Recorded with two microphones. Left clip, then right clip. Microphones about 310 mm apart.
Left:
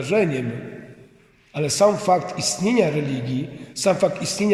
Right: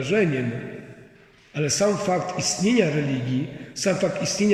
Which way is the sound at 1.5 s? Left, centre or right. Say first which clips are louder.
Left 4 dB; centre.